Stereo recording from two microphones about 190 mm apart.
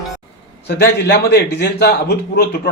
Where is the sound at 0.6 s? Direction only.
60° left (ahead or behind).